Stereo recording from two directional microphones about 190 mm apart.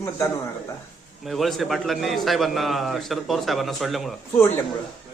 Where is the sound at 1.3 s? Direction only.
Centre (ahead or behind).